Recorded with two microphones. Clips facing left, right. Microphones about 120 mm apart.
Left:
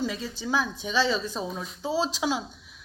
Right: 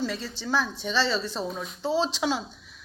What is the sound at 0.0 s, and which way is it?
A woman's voice, 10° left (ahead or behind).